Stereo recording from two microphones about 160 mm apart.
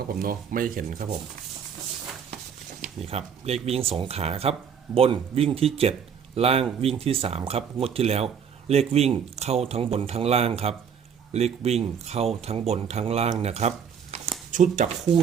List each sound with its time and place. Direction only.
0.1 s speech: 65° right (ahead or behind)
2.8 s speech: 40° right (ahead or behind)